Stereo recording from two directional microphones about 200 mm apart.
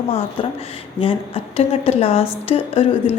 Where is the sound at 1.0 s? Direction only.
25° left (ahead or behind).